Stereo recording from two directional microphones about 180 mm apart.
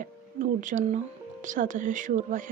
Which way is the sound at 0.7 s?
45° right (ahead or behind).